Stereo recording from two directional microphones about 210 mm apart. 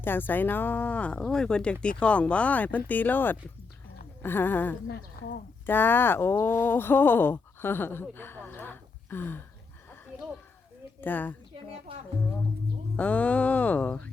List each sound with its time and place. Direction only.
0.0 s speech: 10° left (ahead or behind)
8.1 s a sound: 10° left (ahead or behind)
11.0 s speech: 10° left (ahead or behind)
11.9 s speech: 25° right (ahead or behind)
13.0 s speech: 5° left (ahead or behind)